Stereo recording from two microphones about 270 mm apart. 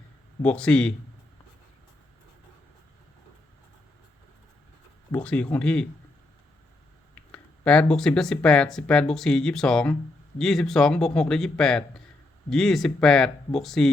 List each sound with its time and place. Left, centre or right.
0.4 s speech: centre
5.1 s speech: centre
7.3 s speech: centre